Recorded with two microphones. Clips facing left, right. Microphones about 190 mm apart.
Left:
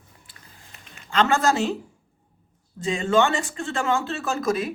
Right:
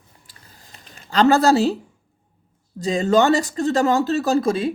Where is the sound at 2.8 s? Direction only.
40° right (ahead or behind).